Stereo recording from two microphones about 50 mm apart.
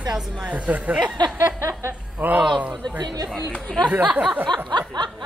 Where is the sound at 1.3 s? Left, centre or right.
Right.